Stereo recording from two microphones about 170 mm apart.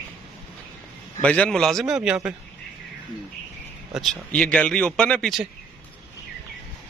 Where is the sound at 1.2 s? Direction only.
5° left (ahead or behind).